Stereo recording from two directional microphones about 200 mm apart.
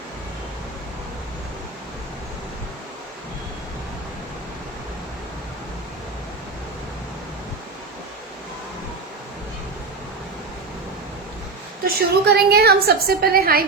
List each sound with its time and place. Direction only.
11.9 s a woman's voice: 50° right (ahead or behind)